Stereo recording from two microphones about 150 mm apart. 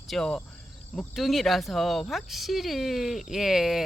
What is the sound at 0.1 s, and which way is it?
Speech, 5° left (ahead or behind).